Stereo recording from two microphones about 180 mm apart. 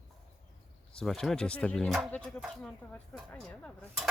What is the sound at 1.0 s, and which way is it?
Speech, centre (ahead or behind).